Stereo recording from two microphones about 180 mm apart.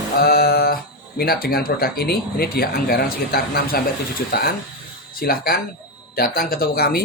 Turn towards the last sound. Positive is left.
turn(degrees=60)  # may be behind; listen again after turning